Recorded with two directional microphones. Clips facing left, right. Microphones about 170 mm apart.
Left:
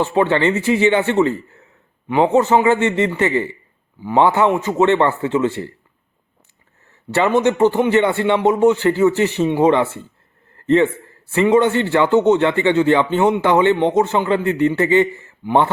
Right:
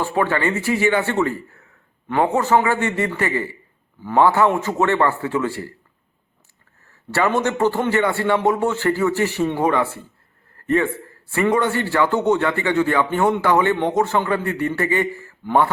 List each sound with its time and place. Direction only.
0.0 s speech: 20° left (ahead or behind)
7.1 s speech: 20° left (ahead or behind)
11.3 s speech: 20° left (ahead or behind)